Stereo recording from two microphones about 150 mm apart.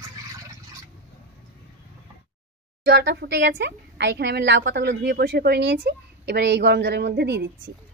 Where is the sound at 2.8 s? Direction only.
90° right.